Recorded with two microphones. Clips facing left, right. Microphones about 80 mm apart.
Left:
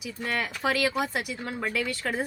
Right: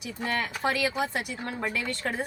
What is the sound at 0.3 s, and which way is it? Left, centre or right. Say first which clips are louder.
A woman's voice: even; centre.